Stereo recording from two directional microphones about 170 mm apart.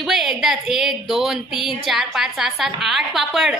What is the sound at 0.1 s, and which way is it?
A woman's voice, centre (ahead or behind).